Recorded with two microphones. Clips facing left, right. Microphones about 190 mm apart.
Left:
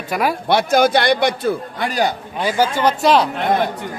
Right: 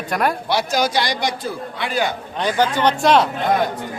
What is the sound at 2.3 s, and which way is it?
Speech, 10° left (ahead or behind).